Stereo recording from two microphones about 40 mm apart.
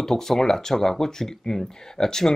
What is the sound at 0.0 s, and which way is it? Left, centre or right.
Speech, centre.